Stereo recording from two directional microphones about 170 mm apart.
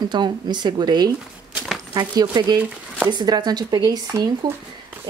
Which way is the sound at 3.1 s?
25° right (ahead or behind).